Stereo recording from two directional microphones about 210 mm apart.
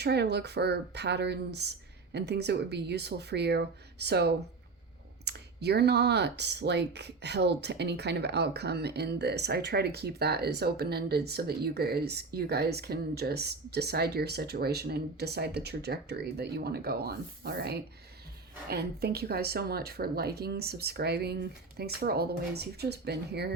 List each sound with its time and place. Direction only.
0.0 s speech: 50° right (ahead or behind)